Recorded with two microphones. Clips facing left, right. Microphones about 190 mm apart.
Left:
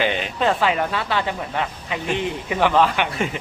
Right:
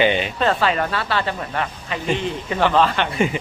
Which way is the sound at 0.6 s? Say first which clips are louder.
Even; 15° left (ahead or behind).